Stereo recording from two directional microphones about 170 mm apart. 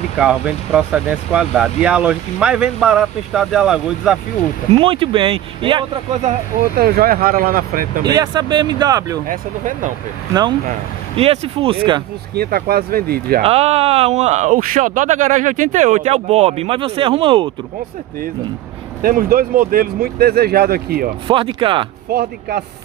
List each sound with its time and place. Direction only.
0.2 s speech: 5° right (ahead or behind)
4.7 s speech: 30° right (ahead or behind)
6.8 s speech: 60° right (ahead or behind)
8.0 s speech: 25° right (ahead or behind)
9.3 s speech: 50° right (ahead or behind)
11.1 s speech: 35° right (ahead or behind)
12.4 s speech: 65° right (ahead or behind)
13.4 s speech: 35° right (ahead or behind)
19.0 s speech: 60° right (ahead or behind)
21.3 s speech: 30° right (ahead or behind)
22.1 s speech: 70° right (ahead or behind)